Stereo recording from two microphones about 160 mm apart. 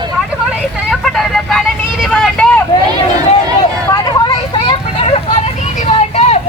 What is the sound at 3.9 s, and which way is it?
Vehicle, 25° left (ahead or behind).